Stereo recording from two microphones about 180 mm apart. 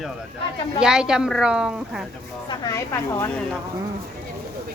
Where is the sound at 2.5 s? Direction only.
15° left (ahead or behind).